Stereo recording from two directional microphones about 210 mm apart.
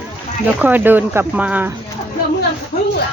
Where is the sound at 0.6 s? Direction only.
10° right (ahead or behind).